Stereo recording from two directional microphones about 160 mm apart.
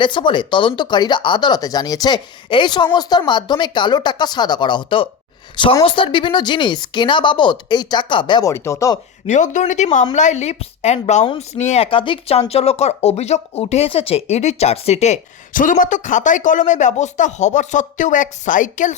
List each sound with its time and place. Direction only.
0.0 s speech: 30° left (ahead or behind)
9.2 s a woman's voice: 50° left (ahead or behind)